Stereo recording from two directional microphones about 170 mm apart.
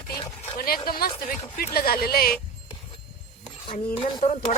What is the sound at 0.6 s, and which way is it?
Speech, 60° left (ahead or behind).